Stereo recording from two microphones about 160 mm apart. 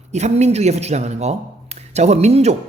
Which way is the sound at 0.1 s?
45° right (ahead or behind).